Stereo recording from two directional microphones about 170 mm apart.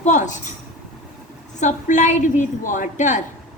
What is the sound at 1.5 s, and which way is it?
A woman's voice, 45° left (ahead or behind).